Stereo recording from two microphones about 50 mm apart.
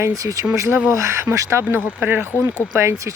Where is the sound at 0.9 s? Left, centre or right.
Right.